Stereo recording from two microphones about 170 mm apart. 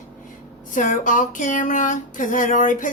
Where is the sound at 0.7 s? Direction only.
50° left (ahead or behind).